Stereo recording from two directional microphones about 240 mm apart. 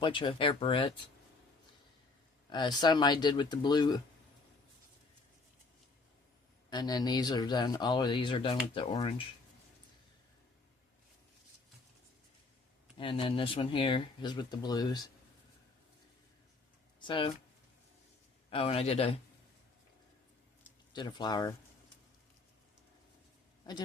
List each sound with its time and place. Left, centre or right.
0.0 s speech: left
2.5 s speech: centre
6.7 s speech: centre
13.0 s speech: left
17.0 s speech: centre
18.5 s speech: left
20.9 s speech: centre